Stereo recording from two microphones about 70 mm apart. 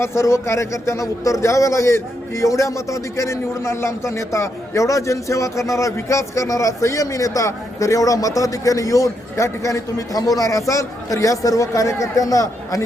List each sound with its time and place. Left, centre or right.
0.0 s a man's voice: left